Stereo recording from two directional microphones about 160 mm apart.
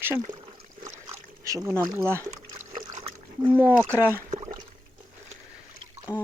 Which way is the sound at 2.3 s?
50° right (ahead or behind).